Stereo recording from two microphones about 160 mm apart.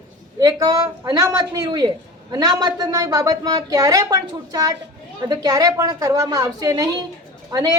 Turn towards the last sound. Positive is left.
turn(degrees=-25)  # may be behind; listen again after turning